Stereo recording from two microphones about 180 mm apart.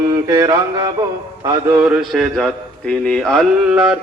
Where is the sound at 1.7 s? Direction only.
5° right (ahead or behind).